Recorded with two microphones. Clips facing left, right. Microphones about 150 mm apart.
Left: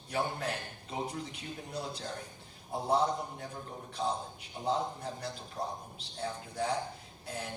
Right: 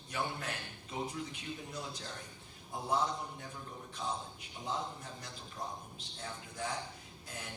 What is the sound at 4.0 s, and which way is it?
A man's voice, 35° left (ahead or behind).